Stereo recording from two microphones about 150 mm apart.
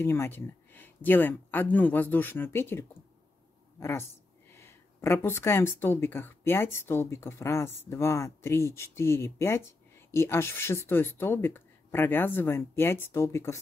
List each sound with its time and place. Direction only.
0.0 s speech: 15° left (ahead or behind)
4.5 s speech: 15° left (ahead or behind)